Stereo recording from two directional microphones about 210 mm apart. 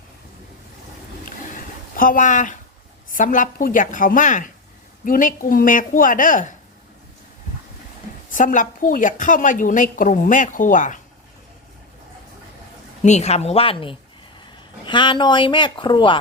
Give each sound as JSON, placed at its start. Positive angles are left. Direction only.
{"t": 1.2, "sound": "a sound", "side_deg": 40}
{"t": 3.1, "sound": "a woman's voice", "side_deg": 40}
{"t": 8.3, "sound": "a woman's voice", "side_deg": 40}
{"t": 13.0, "sound": "speech", "side_deg": 35}